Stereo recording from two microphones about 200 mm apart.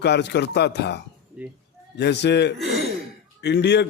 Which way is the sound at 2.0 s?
60° left (ahead or behind).